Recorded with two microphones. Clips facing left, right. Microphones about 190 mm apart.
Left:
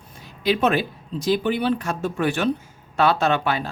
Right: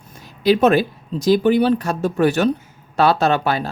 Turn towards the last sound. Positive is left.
turn(degrees=-40)  # may be behind; listen again after turning